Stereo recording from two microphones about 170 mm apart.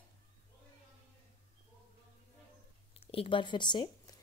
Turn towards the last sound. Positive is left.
turn(degrees=25)  # may be behind; listen again after turning